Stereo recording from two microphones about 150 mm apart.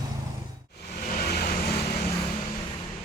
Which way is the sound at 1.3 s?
90° left.